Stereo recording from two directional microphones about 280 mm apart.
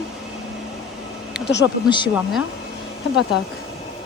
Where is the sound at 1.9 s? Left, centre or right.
Centre.